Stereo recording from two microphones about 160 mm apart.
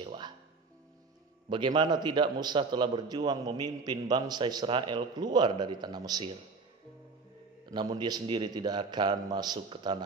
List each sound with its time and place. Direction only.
0.0 s music: 30° right (ahead or behind)
1.5 s a man's voice: 30° right (ahead or behind)
7.7 s a man's voice: 25° right (ahead or behind)